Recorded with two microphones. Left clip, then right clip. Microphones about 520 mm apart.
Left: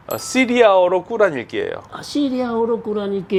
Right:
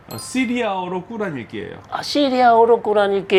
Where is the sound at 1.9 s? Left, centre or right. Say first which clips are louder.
Right 4 dB; right.